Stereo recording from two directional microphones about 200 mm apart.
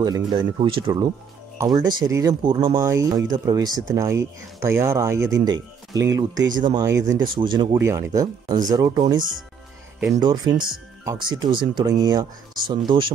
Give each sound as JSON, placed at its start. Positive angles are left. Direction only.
{"t": 0.0, "sound": "speech", "side_deg": -20}
{"t": 10.2, "sound": "speech", "side_deg": -20}